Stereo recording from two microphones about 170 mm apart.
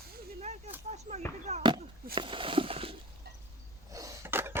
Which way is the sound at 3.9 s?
20° right (ahead or behind).